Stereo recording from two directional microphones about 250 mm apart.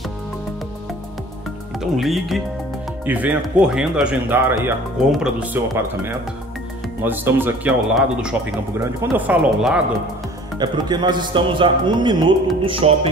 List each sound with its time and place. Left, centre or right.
1.8 s speech: centre
10.6 s a man's voice: centre